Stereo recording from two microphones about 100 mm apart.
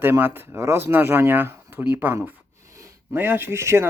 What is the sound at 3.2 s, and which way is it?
Speech, 20° right (ahead or behind).